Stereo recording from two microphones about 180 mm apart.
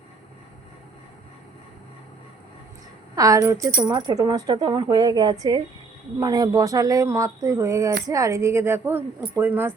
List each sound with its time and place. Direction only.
3.2 s speech: 20° right (ahead or behind)